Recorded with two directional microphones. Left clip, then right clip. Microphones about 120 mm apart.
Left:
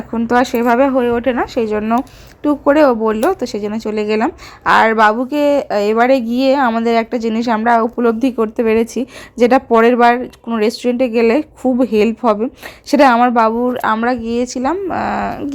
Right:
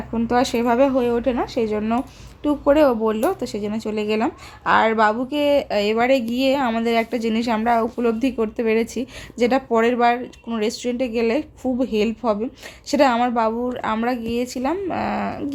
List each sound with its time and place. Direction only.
0.1 s speech: 35° left (ahead or behind)
2.4 s a woman's voice: 40° left (ahead or behind)